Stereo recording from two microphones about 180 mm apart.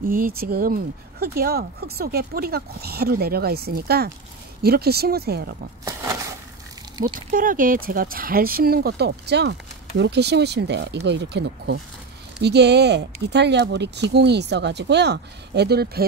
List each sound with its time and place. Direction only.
0.1 s speech: 55° right (ahead or behind)
7.2 s speech: 50° right (ahead or behind)